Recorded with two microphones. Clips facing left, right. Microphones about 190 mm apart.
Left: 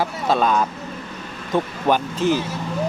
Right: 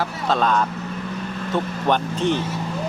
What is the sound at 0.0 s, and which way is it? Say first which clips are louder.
Speech: left 2 dB; 10° left (ahead or behind).